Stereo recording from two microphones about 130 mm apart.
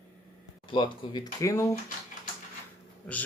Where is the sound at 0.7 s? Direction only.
35° left (ahead or behind).